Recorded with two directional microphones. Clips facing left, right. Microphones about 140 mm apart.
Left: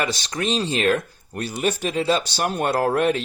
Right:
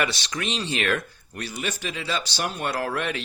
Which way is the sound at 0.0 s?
40° left (ahead or behind).